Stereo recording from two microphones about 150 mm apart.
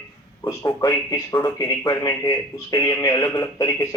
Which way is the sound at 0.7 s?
30° left (ahead or behind).